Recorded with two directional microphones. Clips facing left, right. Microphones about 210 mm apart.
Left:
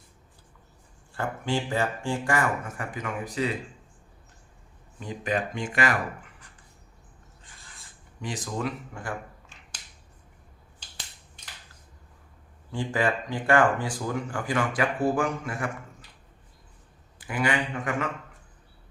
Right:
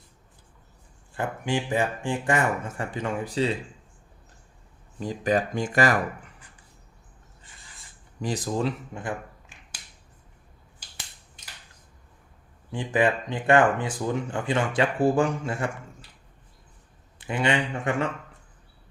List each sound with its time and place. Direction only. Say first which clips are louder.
1.1 s speech: right 1 dB; 15° right (ahead or behind)
4.9 s speech: right 5 dB; 35° right (ahead or behind)
8.2 s speech: right 4 dB; 35° right (ahead or behind)
12.7 s speech: right 3 dB; 20° right (ahead or behind)
17.2 s speech: right 2 dB; 25° right (ahead or behind)